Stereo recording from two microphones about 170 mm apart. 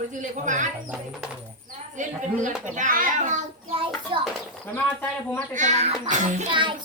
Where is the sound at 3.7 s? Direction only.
30° right (ahead or behind).